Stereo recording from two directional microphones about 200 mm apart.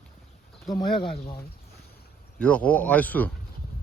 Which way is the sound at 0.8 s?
25° left (ahead or behind).